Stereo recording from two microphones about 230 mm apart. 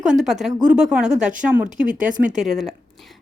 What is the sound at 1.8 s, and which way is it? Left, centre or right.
Speech, right.